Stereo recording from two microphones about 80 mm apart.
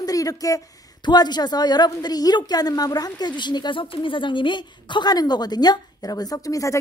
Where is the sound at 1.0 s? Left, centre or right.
Left.